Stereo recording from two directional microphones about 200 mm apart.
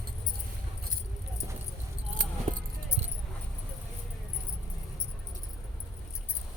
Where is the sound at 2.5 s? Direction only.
30° right (ahead or behind).